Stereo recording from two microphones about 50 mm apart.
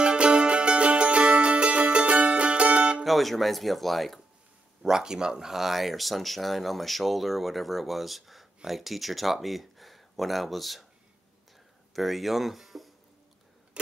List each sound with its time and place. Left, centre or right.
0.0 s music: right
3.0 s speech: centre
4.8 s speech: centre
11.9 s speech: centre